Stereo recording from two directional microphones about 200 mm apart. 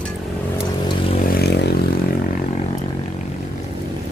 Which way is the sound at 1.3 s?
55° left (ahead or behind).